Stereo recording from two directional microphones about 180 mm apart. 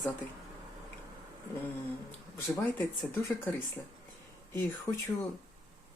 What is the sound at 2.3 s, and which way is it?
Speech, 15° left (ahead or behind).